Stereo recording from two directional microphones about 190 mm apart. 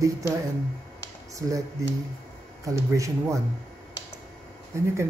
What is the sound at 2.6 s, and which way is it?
Speech, 15° right (ahead or behind).